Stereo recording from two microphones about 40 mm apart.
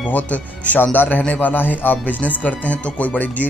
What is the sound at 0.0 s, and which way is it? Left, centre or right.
Speech, left.